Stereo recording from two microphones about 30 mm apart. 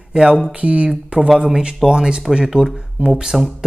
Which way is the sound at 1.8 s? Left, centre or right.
Right.